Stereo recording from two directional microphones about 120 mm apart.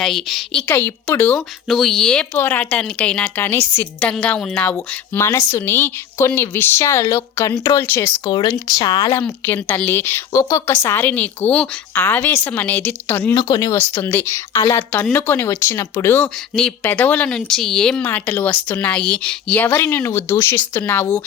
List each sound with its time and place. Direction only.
0.0 s a woman's voice: centre (ahead or behind)
0.7 s a woman's voice: 15° left (ahead or behind)
1.3 s a woman's voice: centre (ahead or behind)
4.1 s a woman's voice: 5° left (ahead or behind)
8.2 s speech: 35° left (ahead or behind)
9.2 s a woman's voice: 15° left (ahead or behind)
13.3 s speech: 35° left (ahead or behind)
13.7 s a woman's voice: 20° left (ahead or behind)
16.2 s a woman's voice: 5° left (ahead or behind)
18.0 s a woman's voice: 15° left (ahead or behind)